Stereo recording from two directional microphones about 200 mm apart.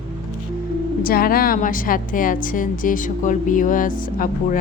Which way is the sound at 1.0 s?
45° left (ahead or behind).